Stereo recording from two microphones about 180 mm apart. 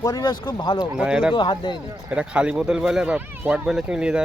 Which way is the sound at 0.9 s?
5° right (ahead or behind).